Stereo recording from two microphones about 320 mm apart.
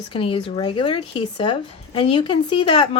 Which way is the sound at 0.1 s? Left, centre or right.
Centre.